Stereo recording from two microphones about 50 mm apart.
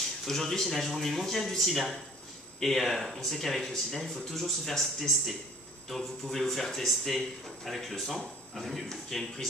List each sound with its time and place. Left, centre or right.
0.2 s speech: centre